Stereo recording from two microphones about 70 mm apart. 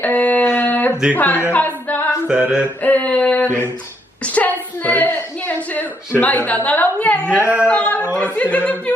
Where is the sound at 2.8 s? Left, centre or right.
Left.